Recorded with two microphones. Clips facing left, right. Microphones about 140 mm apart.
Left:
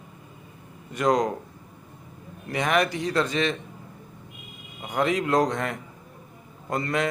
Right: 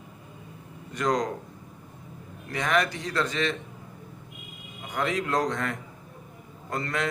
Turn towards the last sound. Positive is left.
turn(degrees=15)  # may be behind; listen again after turning